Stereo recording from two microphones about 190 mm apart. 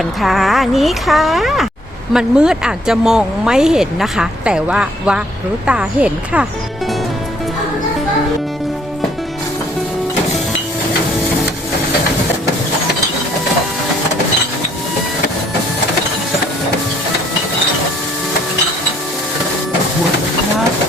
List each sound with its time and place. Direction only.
0.2 s speech: centre (ahead or behind)